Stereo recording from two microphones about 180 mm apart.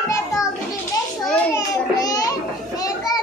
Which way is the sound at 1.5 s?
20° left (ahead or behind).